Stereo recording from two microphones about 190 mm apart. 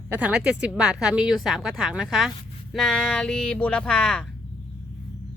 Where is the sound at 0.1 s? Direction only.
5° right (ahead or behind).